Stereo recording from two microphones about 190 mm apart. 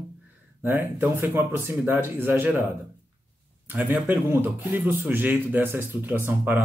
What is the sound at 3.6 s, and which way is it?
Speech, 10° right (ahead or behind).